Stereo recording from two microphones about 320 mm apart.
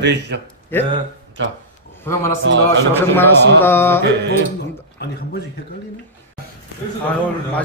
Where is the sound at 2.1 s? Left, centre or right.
Centre.